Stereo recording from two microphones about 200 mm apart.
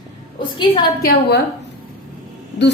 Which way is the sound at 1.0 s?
55° left (ahead or behind).